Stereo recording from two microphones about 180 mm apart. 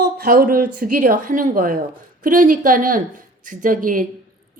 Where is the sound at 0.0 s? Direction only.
55° right (ahead or behind).